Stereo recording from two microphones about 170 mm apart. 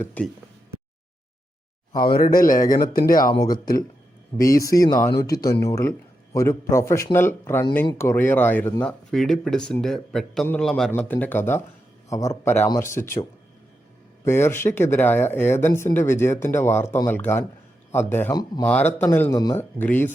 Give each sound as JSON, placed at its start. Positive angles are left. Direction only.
{"t": 0.0, "sound": "speech", "side_deg": 10}
{"t": 1.9, "sound": "speech", "side_deg": 25}
{"t": 2.1, "sound": "speech", "side_deg": 55}
{"t": 3.3, "sound": "speech", "side_deg": 20}
{"t": 14.3, "sound": "speech", "side_deg": 15}
{"t": 18.3, "sound": "speech", "side_deg": 25}
{"t": 18.6, "sound": "speech", "side_deg": 10}
{"t": 19.8, "sound": "speech", "side_deg": 10}